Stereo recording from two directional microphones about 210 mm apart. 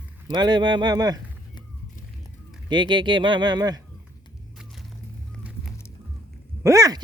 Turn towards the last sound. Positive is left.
turn(degrees=-15)  # may be behind; listen again after turning